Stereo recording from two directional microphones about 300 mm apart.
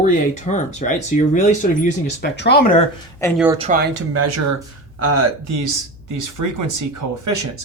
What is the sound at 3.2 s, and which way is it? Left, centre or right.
Speech, centre.